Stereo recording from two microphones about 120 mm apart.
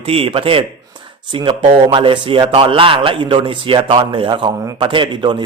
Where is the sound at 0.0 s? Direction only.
50° right (ahead or behind).